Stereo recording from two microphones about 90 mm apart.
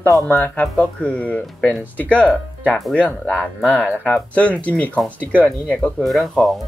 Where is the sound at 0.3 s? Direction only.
20° left (ahead or behind).